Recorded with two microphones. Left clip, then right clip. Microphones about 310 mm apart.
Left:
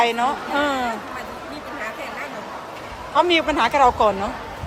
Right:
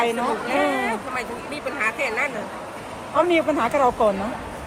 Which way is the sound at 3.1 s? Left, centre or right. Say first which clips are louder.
Left 2 dB; centre.